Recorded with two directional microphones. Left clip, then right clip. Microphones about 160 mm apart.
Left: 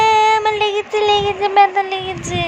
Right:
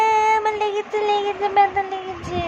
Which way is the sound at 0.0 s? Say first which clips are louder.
Left 4 dB; 5° left (ahead or behind).